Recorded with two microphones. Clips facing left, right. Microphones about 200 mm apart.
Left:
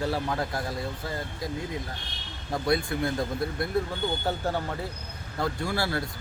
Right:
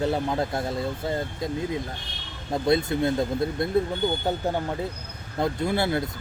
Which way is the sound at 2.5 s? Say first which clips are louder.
Right 4 dB; 25° right (ahead or behind).